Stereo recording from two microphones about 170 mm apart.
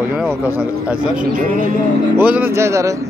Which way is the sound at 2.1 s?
10° right (ahead or behind).